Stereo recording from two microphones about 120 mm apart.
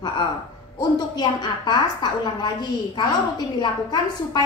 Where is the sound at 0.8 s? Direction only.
35° left (ahead or behind).